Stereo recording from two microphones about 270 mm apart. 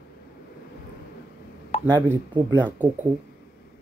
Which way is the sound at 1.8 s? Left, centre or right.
Centre.